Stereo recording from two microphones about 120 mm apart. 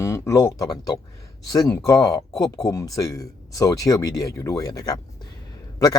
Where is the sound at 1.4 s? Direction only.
30° left (ahead or behind).